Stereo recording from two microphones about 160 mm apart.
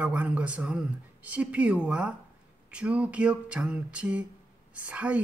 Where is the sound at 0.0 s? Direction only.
10° right (ahead or behind).